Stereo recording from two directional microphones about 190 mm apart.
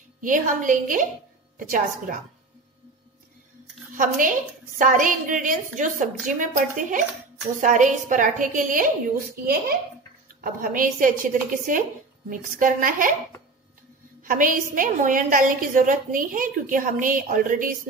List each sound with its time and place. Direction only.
0.2 s a woman's voice: 45° right (ahead or behind)
3.9 s a woman's voice: 45° right (ahead or behind)
10.2 s a woman's voice: 50° right (ahead or behind)
14.2 s a woman's voice: 45° right (ahead or behind)